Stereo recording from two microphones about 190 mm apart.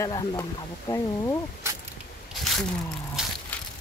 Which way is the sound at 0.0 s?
20° left (ahead or behind).